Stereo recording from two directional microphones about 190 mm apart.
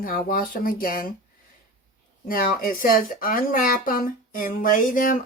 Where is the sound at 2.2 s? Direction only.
50° left (ahead or behind).